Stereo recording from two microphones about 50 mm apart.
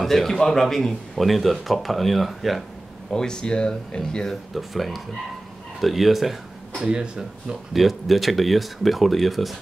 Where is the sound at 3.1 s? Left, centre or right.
Centre.